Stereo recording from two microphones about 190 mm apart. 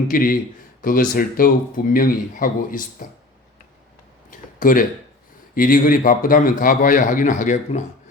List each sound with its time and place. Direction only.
0.1 s speech: 50° left (ahead or behind)
4.3 s a sound: 45° left (ahead or behind)
5.5 s speech: 45° left (ahead or behind)